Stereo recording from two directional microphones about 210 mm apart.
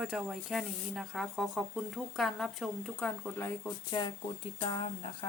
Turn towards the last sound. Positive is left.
turn(degrees=25)  # may be behind; listen again after turning